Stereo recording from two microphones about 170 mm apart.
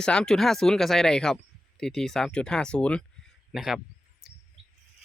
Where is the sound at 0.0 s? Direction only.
5° left (ahead or behind).